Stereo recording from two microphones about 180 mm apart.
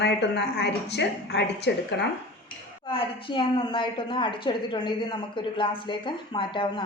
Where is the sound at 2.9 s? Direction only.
30° left (ahead or behind).